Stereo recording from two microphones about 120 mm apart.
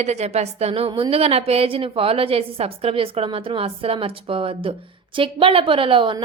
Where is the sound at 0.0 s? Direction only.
65° right (ahead or behind).